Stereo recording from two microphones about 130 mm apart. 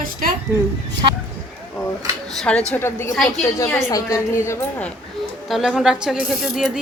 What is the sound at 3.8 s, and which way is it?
Speech, 25° left (ahead or behind).